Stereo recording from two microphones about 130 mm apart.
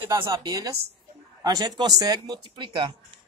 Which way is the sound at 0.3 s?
30° right (ahead or behind).